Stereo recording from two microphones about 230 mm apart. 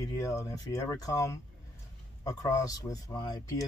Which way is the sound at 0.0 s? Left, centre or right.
Centre.